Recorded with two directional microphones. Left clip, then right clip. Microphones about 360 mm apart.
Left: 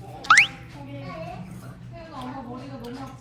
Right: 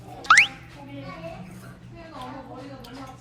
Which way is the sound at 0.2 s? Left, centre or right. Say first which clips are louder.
Even; centre.